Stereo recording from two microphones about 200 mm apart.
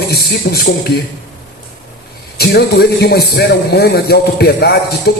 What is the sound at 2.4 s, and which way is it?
A man's voice, 50° left (ahead or behind).